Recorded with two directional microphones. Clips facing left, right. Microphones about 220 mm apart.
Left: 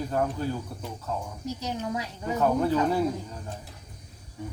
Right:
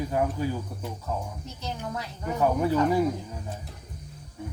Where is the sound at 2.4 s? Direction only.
10° right (ahead or behind).